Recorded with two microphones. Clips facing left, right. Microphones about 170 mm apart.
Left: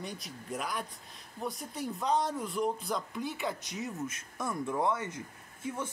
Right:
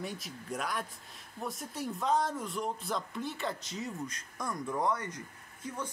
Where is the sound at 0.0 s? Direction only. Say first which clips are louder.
Right 1 dB; centre (ahead or behind).